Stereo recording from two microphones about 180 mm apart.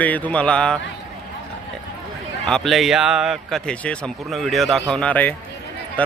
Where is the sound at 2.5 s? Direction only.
Centre (ahead or behind).